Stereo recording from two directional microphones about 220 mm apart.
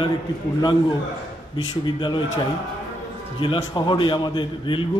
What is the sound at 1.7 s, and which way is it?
Speech, 20° left (ahead or behind).